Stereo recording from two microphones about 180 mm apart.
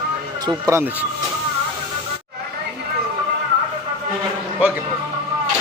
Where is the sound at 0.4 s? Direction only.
20° right (ahead or behind).